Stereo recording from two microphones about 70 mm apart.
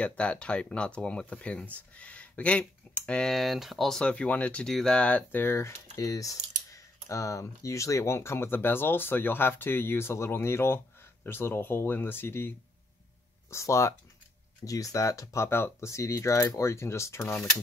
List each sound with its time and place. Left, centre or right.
0.0 s speech: centre
3.1 s speech: centre
4.0 s speech: centre
4.6 s speech: centre
5.3 s speech: left
5.9 s speech: left
13.5 s speech: left
14.6 s speech: left